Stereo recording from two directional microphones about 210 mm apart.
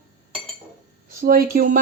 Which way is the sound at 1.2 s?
40° right (ahead or behind).